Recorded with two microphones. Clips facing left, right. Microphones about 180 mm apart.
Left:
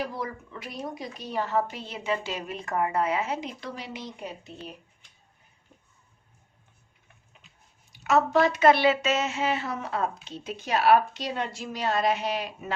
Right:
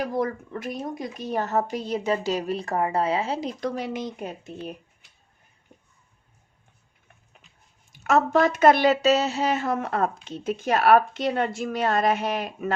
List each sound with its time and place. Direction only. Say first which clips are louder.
0.0 s a woman's voice: right 7 dB; 45° right (ahead or behind); by 3.5 s 30° right (ahead or behind)
3.6 s speech: right 9 dB; 45° right (ahead or behind)
7.9 s speech: right 2 dB; 50° right (ahead or behind)